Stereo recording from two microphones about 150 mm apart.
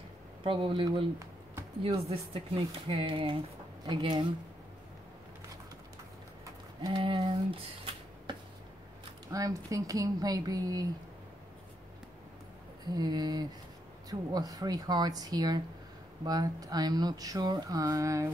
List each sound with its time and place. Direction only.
0.4 s speech: 35° right (ahead or behind)
6.8 s speech: 35° right (ahead or behind)
9.3 s speech: 20° right (ahead or behind)
12.9 s speech: 25° right (ahead or behind)